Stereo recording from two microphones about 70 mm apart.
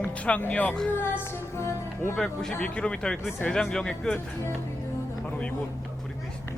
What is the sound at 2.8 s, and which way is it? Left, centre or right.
Speech, centre.